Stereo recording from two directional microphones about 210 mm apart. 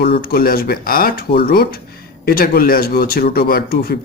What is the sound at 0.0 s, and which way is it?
Speech, 45° left (ahead or behind).